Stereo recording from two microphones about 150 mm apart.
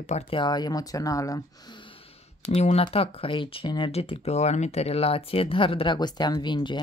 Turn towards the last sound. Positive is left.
turn(degrees=30)  # may be behind; listen again after turning